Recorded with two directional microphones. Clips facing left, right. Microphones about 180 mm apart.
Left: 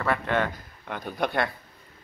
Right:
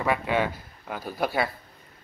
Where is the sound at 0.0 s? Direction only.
10° right (ahead or behind).